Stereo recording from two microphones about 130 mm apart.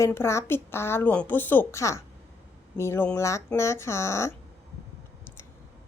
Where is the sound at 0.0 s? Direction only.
20° left (ahead or behind).